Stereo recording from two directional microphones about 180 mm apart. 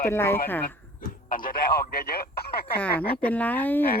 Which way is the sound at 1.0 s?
50° left (ahead or behind).